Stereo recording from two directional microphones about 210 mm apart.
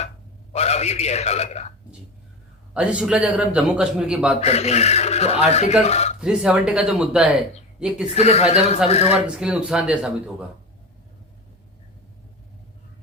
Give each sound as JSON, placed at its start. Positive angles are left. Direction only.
{"t": 0.5, "sound": "a man's voice", "side_deg": 30}
{"t": 2.7, "sound": "a man's voice", "side_deg": -5}
{"t": 4.4, "sound": "speech", "side_deg": 30}
{"t": 6.2, "sound": "a man's voice", "side_deg": -5}
{"t": 8.1, "sound": "speech", "side_deg": 30}
{"t": 9.1, "sound": "a man's voice", "side_deg": -5}